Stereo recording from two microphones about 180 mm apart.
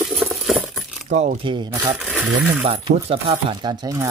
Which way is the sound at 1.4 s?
25° right (ahead or behind).